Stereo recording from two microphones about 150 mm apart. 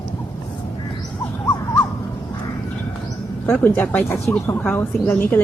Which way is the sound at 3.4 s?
10° left (ahead or behind).